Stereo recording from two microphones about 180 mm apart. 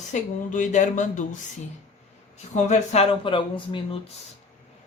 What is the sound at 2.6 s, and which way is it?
Speech, 40° left (ahead or behind).